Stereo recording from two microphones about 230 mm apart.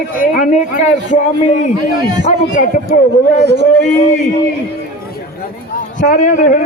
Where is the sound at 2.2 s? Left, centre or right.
Left.